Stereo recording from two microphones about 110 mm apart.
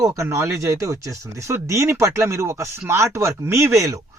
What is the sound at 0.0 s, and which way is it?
Speech, 30° right (ahead or behind).